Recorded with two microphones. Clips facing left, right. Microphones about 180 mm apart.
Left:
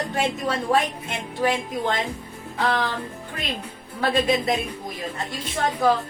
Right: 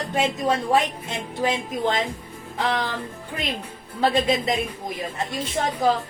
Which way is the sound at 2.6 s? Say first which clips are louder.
Left 1 dB; 20° right (ahead or behind).